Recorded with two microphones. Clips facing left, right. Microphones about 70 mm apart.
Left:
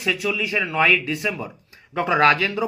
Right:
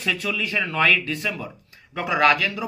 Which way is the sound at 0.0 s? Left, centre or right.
Centre.